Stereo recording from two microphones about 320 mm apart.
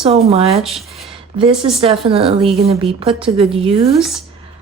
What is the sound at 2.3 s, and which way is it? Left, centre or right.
Speech, centre.